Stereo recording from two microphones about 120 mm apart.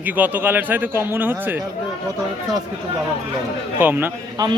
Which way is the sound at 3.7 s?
15° right (ahead or behind).